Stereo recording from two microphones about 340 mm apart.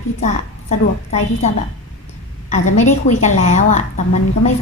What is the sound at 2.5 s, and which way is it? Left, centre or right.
A woman's voice, left.